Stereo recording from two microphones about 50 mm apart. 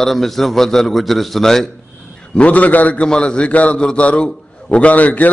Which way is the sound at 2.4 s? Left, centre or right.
Left.